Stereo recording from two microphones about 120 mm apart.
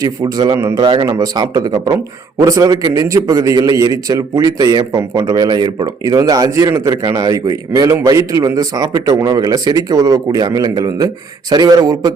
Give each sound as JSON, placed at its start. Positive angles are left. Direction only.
{"t": 0.0, "sound": "a man's voice", "side_deg": -30}
{"t": 0.8, "sound": "a man's voice", "side_deg": -45}
{"t": 1.0, "sound": "a man's voice", "side_deg": -30}